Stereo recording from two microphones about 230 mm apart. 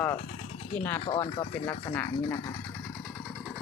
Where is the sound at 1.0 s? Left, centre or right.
Left.